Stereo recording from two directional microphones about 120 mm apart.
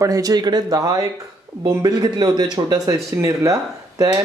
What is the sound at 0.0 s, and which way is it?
Speech, 30° right (ahead or behind).